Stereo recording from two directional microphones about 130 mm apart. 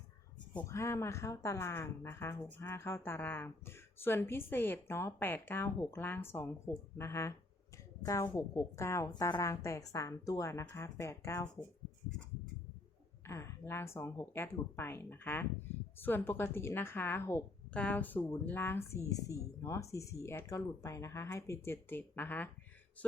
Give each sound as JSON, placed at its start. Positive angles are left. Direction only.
{"t": 0.6, "sound": "a woman's voice", "side_deg": 20}
{"t": 13.2, "sound": "a woman's voice", "side_deg": 20}